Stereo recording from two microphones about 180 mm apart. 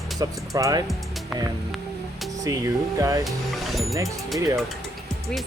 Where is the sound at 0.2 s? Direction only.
20° right (ahead or behind).